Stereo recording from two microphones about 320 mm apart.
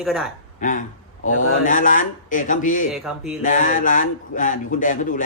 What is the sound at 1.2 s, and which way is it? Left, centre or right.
Speech, left.